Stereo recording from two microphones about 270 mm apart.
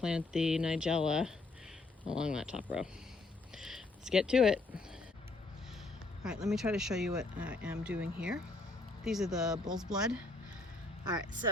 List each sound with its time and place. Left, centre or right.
0.0 s speech: centre
6.2 s speech: centre
11.0 s speech: centre